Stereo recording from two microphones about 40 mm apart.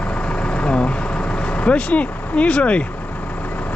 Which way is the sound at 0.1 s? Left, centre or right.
Left.